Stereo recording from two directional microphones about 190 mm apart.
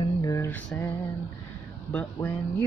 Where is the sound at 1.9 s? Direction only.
10° left (ahead or behind).